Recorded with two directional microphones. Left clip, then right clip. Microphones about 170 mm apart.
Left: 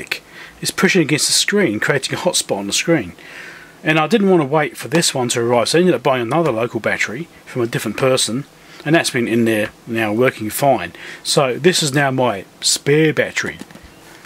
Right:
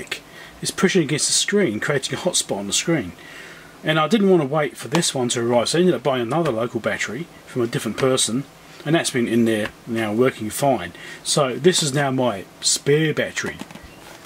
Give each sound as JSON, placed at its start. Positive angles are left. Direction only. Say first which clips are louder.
{"t": 0.1, "sound": "speech", "louder": "left 5 dB", "side_deg": 20}